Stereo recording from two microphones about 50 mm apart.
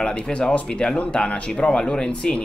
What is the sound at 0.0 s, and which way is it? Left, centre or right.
Speech, centre.